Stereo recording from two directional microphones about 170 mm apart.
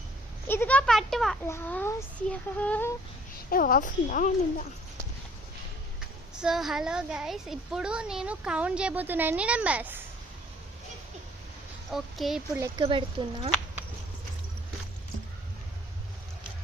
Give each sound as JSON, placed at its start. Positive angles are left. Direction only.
{"t": 0.4, "sound": "a sound", "side_deg": 15}
{"t": 1.5, "sound": "a child's voice", "side_deg": 15}
{"t": 3.5, "sound": "a woman's voice", "side_deg": 55}
{"t": 6.4, "sound": "a woman's voice", "side_deg": 0}
{"t": 11.9, "sound": "a child's voice", "side_deg": 0}
{"t": 12.5, "sound": "speech", "side_deg": -20}
{"t": 12.8, "sound": "speech", "side_deg": -30}